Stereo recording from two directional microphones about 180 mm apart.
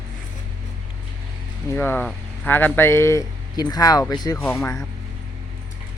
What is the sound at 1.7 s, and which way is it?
Speech, 10° left (ahead or behind).